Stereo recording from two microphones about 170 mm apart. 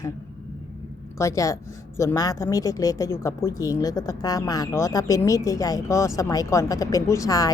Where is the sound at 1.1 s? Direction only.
15° left (ahead or behind).